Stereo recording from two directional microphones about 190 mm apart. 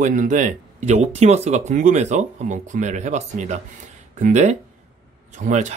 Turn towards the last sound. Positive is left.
turn(degrees=-40)  # may be behind; listen again after turning